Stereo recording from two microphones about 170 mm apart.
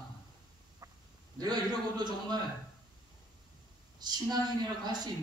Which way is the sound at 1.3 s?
25° right (ahead or behind).